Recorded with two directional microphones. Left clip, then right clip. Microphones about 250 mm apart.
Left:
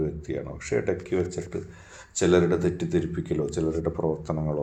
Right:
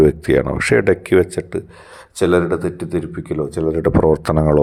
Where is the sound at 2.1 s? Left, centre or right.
Right.